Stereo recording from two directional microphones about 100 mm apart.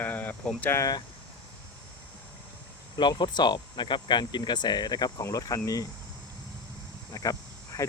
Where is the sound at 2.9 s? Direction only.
45° left (ahead or behind).